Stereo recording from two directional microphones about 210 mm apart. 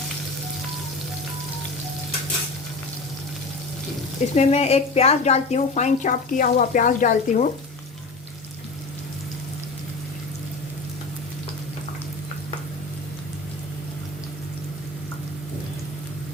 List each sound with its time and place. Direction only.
4.4 s a woman's voice: 30° left (ahead or behind)